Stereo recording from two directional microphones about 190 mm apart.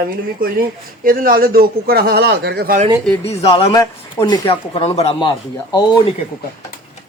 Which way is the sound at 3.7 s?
20° left (ahead or behind).